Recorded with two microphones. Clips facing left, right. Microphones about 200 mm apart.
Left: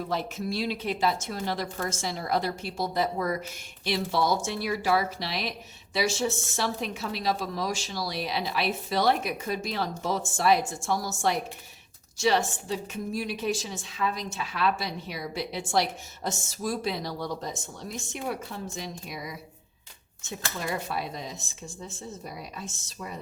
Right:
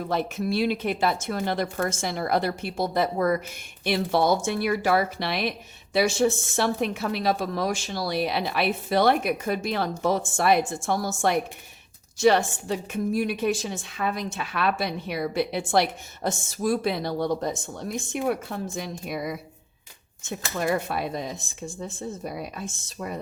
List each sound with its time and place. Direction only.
0.1 s a woman's voice: 60° right (ahead or behind)
20.6 s a woman's voice: 55° right (ahead or behind)